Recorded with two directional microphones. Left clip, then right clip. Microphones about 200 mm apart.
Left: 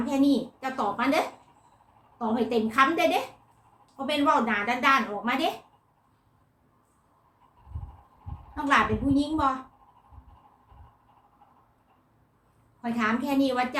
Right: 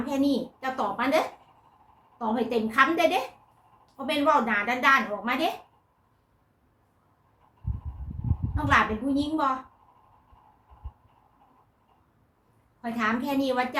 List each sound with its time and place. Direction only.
0.0 s a woman's voice: 5° right (ahead or behind)
8.5 s a woman's voice: 5° right (ahead or behind)
12.8 s a woman's voice: 5° right (ahead or behind)